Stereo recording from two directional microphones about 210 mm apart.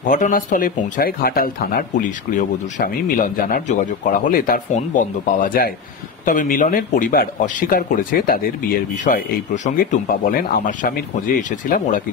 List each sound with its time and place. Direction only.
0.1 s speech: 40° left (ahead or behind)